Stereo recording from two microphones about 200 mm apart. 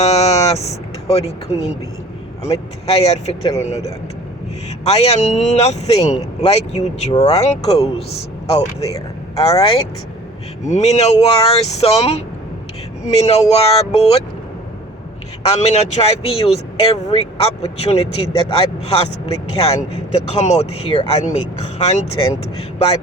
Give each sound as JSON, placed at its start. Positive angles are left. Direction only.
{"t": 0.0, "sound": "speech", "side_deg": 30}
{"t": 15.4, "sound": "speech", "side_deg": 30}